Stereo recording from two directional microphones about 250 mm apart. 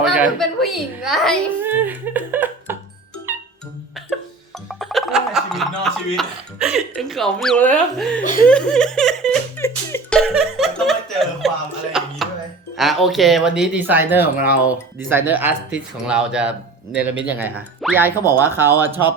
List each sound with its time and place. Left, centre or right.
0.0 s a child's voice: centre
3.3 s music: centre
4.7 s music: centre
8.2 s speech: left
8.4 s a sound: centre
10.2 s chuckle: centre
12.7 s speech: centre